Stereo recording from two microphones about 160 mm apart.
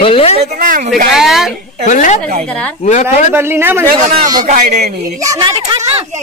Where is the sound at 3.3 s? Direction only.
15° right (ahead or behind).